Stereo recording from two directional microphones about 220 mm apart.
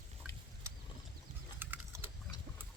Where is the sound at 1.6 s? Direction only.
10° right (ahead or behind).